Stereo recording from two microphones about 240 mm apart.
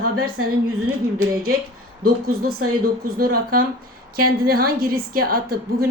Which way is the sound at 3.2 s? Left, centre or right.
Right.